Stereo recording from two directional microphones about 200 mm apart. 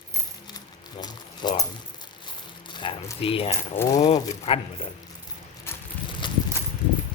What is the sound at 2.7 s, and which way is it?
Speech, 25° left (ahead or behind).